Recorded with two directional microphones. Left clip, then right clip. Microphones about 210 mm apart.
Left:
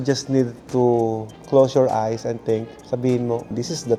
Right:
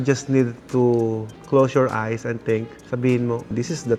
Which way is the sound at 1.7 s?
30° right (ahead or behind).